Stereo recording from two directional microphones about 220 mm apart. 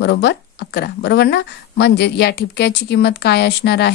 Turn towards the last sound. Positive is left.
turn(degrees=50)  # may be behind; listen again after turning